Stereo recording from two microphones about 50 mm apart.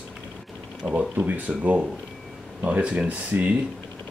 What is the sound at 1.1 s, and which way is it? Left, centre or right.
Speech, right.